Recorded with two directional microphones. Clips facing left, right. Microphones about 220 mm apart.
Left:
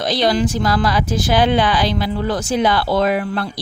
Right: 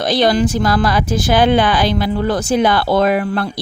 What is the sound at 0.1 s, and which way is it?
Speech, 50° right (ahead or behind).